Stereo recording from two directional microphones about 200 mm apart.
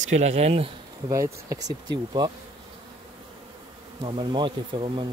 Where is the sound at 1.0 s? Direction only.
15° right (ahead or behind).